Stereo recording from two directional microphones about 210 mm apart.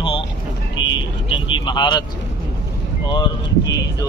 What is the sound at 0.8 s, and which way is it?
Vehicle, 65° left (ahead or behind).